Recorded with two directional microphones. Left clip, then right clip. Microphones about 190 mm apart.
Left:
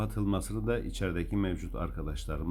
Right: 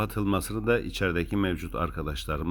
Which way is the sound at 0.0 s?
20° right (ahead or behind).